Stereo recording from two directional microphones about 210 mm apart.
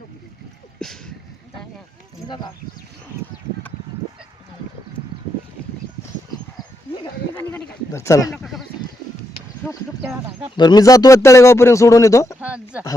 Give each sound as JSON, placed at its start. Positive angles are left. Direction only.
{"t": 0.8, "sound": "a sound", "side_deg": 0}
{"t": 2.2, "sound": "speech", "side_deg": 20}
{"t": 7.5, "sound": "speech", "side_deg": 15}
{"t": 8.3, "sound": "sheep", "side_deg": 0}
{"t": 10.6, "sound": "speech", "side_deg": 20}
{"t": 12.4, "sound": "a sound", "side_deg": -5}